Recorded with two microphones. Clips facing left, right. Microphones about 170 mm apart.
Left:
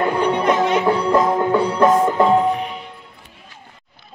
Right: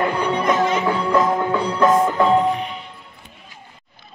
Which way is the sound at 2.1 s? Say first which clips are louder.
Left 1 dB; 5° left (ahead or behind).